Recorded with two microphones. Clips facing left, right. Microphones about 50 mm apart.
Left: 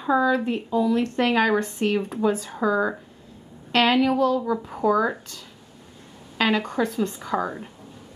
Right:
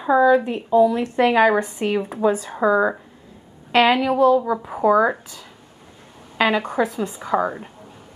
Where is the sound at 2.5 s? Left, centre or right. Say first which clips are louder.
Right 5 dB; centre.